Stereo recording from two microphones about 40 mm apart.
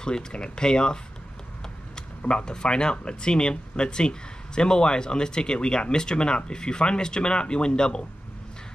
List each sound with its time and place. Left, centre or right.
0.0 s speech: left
2.0 s speech: left